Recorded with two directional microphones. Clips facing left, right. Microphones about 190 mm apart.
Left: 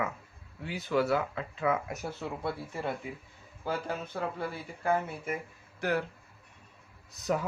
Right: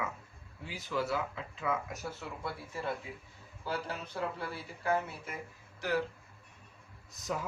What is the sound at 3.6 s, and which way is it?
Speech, 55° left (ahead or behind).